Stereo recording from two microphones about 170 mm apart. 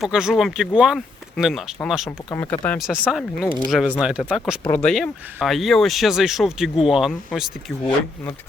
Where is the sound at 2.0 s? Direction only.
15° left (ahead or behind).